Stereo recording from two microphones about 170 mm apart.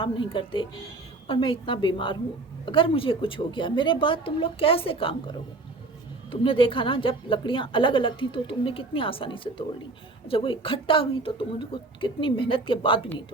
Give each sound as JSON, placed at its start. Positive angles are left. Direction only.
{"t": 0.0, "sound": "a woman's voice", "side_deg": 30}